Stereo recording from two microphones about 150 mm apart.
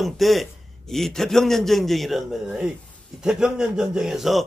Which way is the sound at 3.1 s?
5° right (ahead or behind).